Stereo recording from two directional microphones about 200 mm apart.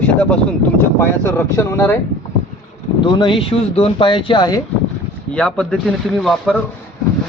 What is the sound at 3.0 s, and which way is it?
Speech, 25° left (ahead or behind).